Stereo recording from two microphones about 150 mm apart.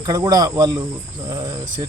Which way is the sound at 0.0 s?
25° right (ahead or behind).